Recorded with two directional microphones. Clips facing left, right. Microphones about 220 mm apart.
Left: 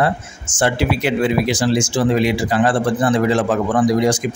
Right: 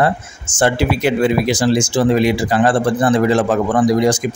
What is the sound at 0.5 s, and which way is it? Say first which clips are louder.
Speech: right 2 dB; 40° right (ahead or behind).